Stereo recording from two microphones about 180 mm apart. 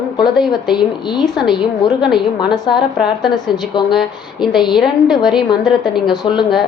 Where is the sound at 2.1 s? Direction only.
25° left (ahead or behind).